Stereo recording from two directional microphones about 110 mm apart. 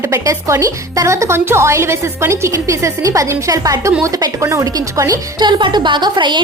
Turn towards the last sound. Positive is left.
turn(degrees=-45)  # may be behind; listen again after turning